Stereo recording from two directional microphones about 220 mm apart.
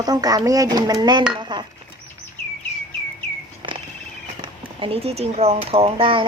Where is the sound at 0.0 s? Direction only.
15° right (ahead or behind).